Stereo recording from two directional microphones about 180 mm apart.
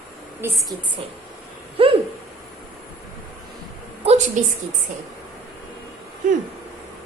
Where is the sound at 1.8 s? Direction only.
30° right (ahead or behind).